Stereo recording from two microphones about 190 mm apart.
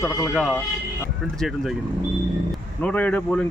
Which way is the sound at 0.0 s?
15° left (ahead or behind).